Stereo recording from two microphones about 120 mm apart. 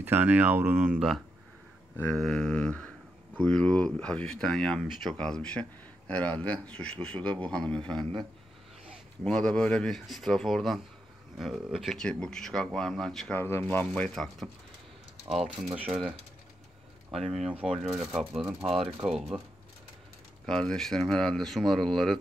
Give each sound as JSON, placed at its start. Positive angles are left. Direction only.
{"t": 0.0, "sound": "speech", "side_deg": -15}
{"t": 2.1, "sound": "speech", "side_deg": 5}
{"t": 9.2, "sound": "speech", "side_deg": 10}
{"t": 13.4, "sound": "speech", "side_deg": 20}
{"t": 15.4, "sound": "speech", "side_deg": -10}
{"t": 17.1, "sound": "speech", "side_deg": 0}
{"t": 20.4, "sound": "speech", "side_deg": 5}